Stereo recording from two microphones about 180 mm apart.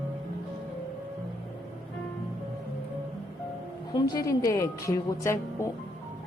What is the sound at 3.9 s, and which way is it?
Speech, 20° left (ahead or behind).